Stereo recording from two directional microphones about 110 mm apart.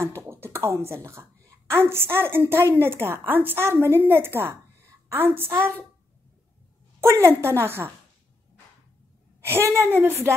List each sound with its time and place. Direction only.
0.3 s a sound: 25° right (ahead or behind)
1.7 s a woman's voice: 20° right (ahead or behind)
7.0 s a woman's voice: 25° right (ahead or behind)
9.4 s a woman's voice: 25° right (ahead or behind)